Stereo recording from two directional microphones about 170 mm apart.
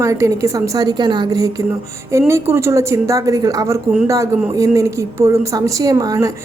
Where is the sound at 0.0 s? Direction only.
15° right (ahead or behind).